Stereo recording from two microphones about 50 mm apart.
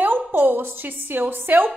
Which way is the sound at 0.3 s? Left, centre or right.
Right.